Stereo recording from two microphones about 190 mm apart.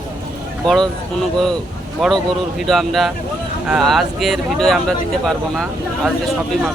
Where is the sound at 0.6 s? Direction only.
Centre (ahead or behind).